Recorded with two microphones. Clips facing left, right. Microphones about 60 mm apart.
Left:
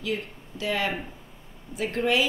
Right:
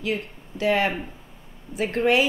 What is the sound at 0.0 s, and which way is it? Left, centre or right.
A woman's voice, right.